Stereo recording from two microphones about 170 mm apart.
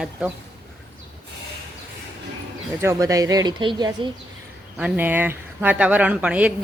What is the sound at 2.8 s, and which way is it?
Speech, 15° right (ahead or behind).